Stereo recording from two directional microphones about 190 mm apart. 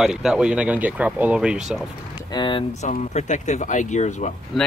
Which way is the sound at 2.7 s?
35° left (ahead or behind).